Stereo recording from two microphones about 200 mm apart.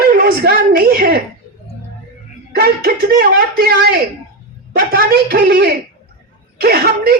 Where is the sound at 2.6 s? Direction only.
50° right (ahead or behind).